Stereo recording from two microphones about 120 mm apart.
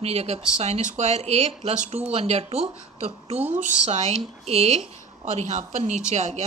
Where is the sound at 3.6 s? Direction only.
80° right; by 4.8 s 60° right (ahead or behind).